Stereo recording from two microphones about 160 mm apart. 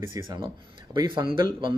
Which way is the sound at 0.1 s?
20° right (ahead or behind).